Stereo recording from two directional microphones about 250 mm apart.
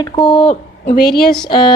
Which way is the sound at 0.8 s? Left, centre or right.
Left.